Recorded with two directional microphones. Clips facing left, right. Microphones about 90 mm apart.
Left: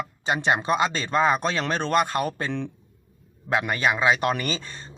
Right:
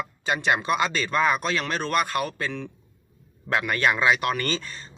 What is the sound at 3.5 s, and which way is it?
Speech, 20° left (ahead or behind).